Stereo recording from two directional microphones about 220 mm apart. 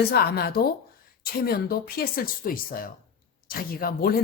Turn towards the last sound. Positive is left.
turn(degrees=45)  # may be behind; listen again after turning